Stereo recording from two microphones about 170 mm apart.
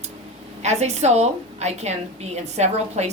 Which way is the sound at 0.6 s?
40° right (ahead or behind).